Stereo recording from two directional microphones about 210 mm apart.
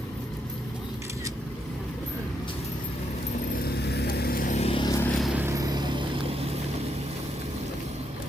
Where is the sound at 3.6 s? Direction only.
50° left (ahead or behind); by 5.1 s 15° left (ahead or behind).